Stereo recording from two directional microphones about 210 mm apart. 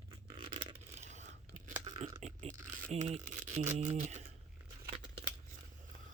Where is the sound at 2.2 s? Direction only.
35° right (ahead or behind).